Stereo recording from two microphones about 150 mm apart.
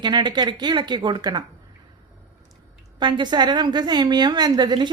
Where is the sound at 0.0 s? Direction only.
30° right (ahead or behind).